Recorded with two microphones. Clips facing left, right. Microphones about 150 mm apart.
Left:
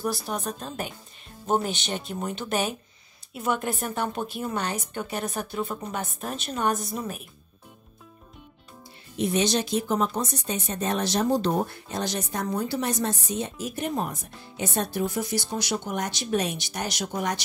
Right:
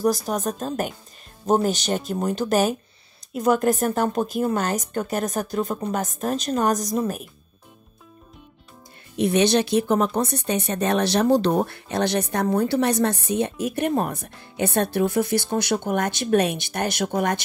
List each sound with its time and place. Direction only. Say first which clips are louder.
0.0 s speech: right 7 dB; 40° right (ahead or behind)
9.2 s speech: right 5 dB; 65° right (ahead or behind)